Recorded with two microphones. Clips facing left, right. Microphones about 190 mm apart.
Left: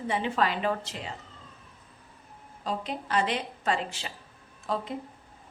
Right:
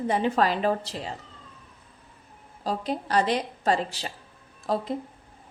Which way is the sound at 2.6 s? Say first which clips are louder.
Right 4 dB; 35° right (ahead or behind).